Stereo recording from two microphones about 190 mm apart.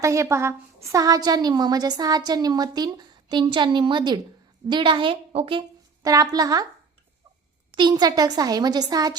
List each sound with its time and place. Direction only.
0.0 s a woman's voice: 15° right (ahead or behind)
7.8 s a woman's voice: 20° right (ahead or behind)